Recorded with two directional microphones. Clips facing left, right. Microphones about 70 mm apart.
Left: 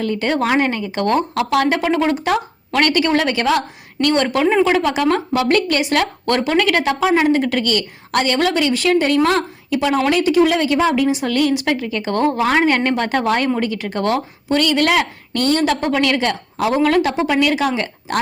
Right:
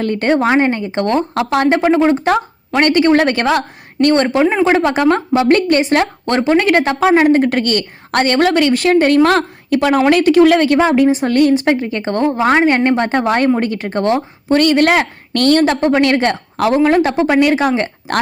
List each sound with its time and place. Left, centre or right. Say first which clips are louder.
0.0 s a woman's voice: right 3 dB; right
0.3 s a woman's voice: right 5 dB; right
4.3 s speech: right 2 dB; right
4.6 s a woman's voice: right 4 dB; right
7.0 s a woman's voice: right 5 dB; right
15.3 s a woman's voice: right 7 dB; right
15.6 s a woman's voice: right 4 dB; right
16.8 s a woman's voice: right 3 dB; right